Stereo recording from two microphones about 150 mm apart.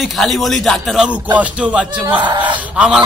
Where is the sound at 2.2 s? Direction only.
30° right (ahead or behind).